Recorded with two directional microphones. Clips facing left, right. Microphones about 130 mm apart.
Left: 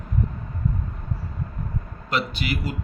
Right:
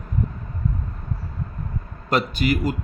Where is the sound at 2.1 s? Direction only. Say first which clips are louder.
Right 5 dB; 45° right (ahead or behind).